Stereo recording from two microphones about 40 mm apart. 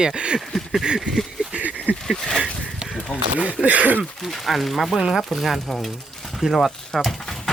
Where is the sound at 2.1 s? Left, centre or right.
Centre.